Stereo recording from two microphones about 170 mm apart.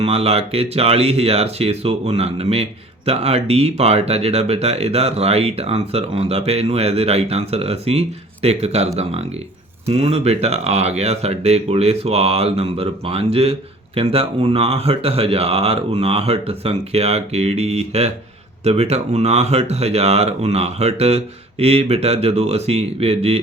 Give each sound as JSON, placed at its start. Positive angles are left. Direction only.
{"t": 0.0, "sound": "speech", "side_deg": -35}